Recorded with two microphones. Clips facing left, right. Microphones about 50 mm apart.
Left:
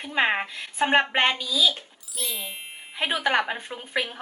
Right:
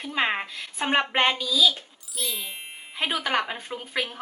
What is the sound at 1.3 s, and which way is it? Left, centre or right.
Speech, left.